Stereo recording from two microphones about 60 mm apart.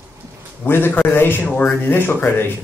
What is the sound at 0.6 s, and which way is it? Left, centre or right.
Speech, left.